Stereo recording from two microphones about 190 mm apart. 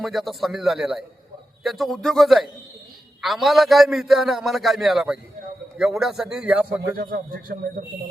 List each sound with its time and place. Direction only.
0.0 s a man's voice: centre (ahead or behind)
6.9 s speech: 50° right (ahead or behind)